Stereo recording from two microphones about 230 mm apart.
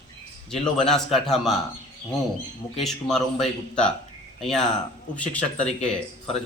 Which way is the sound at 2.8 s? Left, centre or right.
Centre.